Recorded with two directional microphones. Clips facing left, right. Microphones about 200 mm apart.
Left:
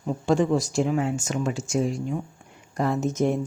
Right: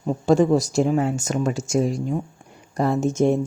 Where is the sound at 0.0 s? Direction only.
40° right (ahead or behind).